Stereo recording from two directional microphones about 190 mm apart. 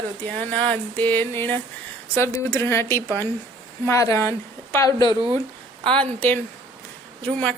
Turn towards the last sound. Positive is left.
turn(degrees=5)  # may be behind; listen again after turning